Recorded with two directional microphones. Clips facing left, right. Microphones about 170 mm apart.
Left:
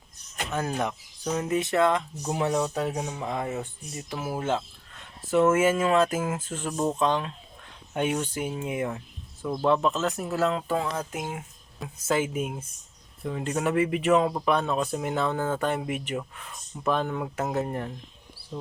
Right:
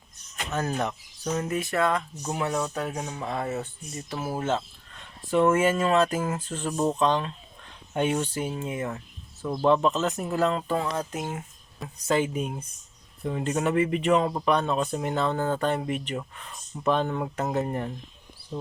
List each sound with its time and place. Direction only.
0.5 s speech: 10° left (ahead or behind)
6.7 s speech: 5° right (ahead or behind)
6.9 s speech: 10° left (ahead or behind)
9.4 s speech: 5° right (ahead or behind)